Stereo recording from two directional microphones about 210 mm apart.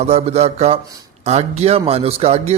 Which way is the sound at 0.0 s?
30° right (ahead or behind).